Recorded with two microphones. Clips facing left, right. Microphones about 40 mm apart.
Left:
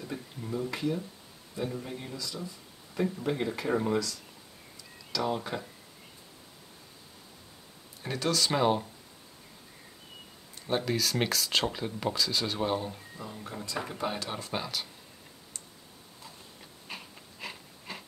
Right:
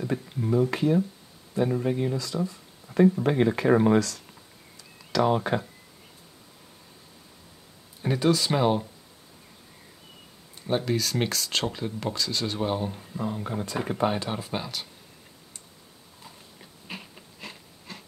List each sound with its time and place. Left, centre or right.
0.0 s speech: right
8.0 s speech: centre
10.7 s speech: centre
12.8 s speech: right
13.2 s speech: right
14.0 s speech: right
14.3 s speech: centre
16.8 s a sound: centre
17.4 s a sound: centre